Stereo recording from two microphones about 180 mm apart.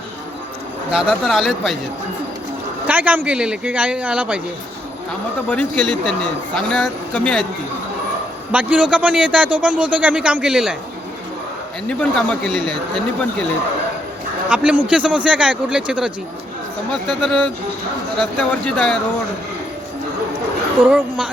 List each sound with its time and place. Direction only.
0.9 s a man's voice: 5° right (ahead or behind)
2.8 s a man's voice: 10° right (ahead or behind)
5.5 s a man's voice: 5° left (ahead or behind)
8.5 s a man's voice: 5° right (ahead or behind)
11.9 s a man's voice: 5° left (ahead or behind)
14.5 s a man's voice: 5° right (ahead or behind)
18.6 s a man's voice: centre (ahead or behind)
20.8 s a man's voice: 10° right (ahead or behind)